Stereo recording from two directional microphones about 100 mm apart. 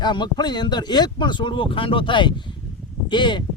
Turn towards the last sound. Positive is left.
turn(degrees=50)  # may be behind; listen again after turning